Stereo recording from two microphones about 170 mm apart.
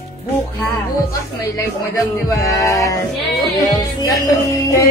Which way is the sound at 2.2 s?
20° left (ahead or behind).